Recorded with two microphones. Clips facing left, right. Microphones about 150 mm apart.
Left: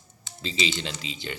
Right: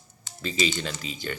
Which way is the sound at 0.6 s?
45° right (ahead or behind).